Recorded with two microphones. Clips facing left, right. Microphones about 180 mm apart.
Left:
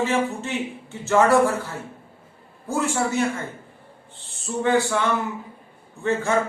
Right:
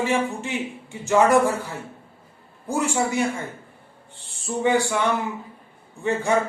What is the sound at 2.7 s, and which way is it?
Speech, 15° right (ahead or behind).